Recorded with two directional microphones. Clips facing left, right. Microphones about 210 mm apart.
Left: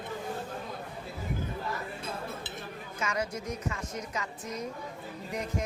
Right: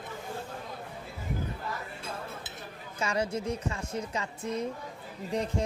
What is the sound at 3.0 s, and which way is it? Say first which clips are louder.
A woman's voice: right 3 dB; 30° right (ahead or behind).